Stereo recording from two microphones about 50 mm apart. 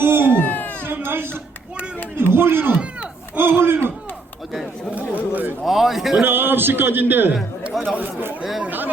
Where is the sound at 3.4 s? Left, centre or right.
Right.